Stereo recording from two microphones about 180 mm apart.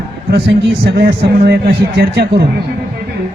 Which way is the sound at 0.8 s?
65° right (ahead or behind).